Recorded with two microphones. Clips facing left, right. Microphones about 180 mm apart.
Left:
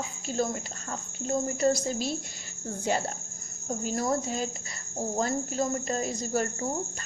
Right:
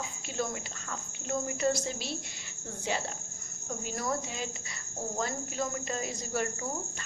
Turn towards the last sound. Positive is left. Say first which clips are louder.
# left 5 dB
turn(degrees=40)  # may be behind; listen again after turning